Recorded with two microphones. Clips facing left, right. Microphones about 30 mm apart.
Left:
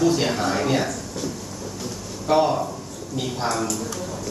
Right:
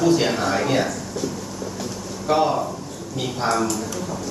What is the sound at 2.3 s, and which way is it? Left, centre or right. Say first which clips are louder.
Speech: even; centre.